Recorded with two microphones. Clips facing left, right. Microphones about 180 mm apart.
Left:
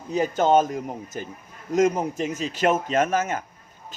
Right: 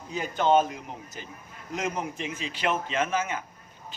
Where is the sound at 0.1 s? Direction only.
40° left (ahead or behind).